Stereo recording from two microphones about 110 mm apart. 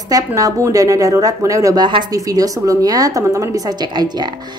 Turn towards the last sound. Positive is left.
turn(degrees=-40)  # may be behind; listen again after turning